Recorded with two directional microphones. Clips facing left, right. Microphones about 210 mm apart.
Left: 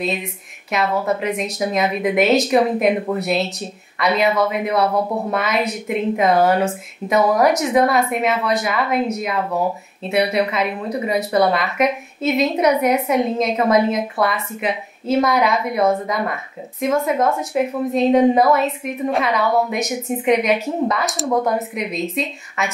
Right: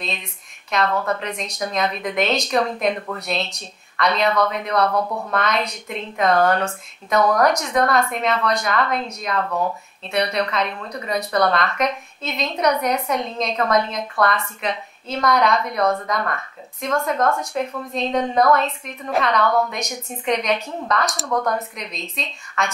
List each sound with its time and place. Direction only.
0.7 s speech: 5° left (ahead or behind)
5.0 s speech: 20° left (ahead or behind)
5.3 s speech: 5° left (ahead or behind)